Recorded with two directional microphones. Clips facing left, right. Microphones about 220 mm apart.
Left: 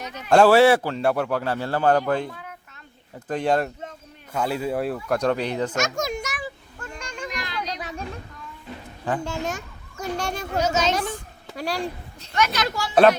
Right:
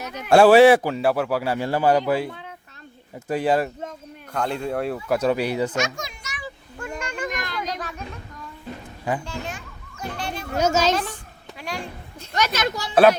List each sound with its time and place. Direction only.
0.0 s a man's voice: 10° right (ahead or behind)
4.3 s a man's voice: 5° left (ahead or behind)
5.8 s a child's voice: 45° left (ahead or behind)
7.0 s a sound: 5° right (ahead or behind)
7.3 s a sound: 50° right (ahead or behind)
9.2 s children playing: 45° left (ahead or behind)
10.6 s a child's voice: 45° right (ahead or behind)
11.5 s a woman's voice: 35° left (ahead or behind)
12.2 s speech: 40° right (ahead or behind)
12.5 s speech: 20° right (ahead or behind)
12.9 s speech: 5° right (ahead or behind)